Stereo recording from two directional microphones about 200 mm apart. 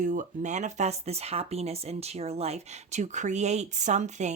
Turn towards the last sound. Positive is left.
turn(degrees=-35)  # may be behind; listen again after turning